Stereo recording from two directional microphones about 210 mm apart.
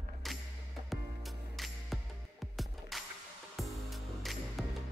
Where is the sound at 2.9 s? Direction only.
Centre (ahead or behind).